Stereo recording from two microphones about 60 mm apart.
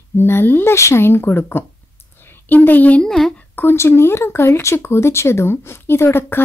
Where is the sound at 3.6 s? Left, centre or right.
Left.